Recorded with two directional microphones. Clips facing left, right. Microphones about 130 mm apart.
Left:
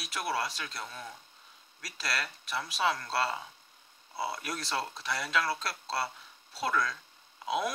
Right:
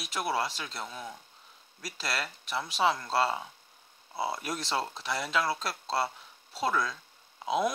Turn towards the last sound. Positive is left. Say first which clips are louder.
# right 3 dB
turn(degrees=-25)  # may be behind; listen again after turning